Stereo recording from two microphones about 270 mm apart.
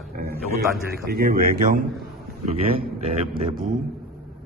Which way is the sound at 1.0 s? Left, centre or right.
Right.